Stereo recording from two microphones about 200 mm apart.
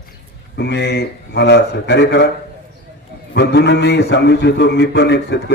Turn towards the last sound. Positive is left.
turn(degrees=55)  # may be behind; listen again after turning